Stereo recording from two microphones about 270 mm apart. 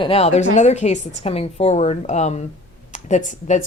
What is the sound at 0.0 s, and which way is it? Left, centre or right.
Speech, left.